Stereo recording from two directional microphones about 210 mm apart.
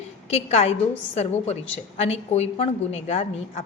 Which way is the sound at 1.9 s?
30° left (ahead or behind).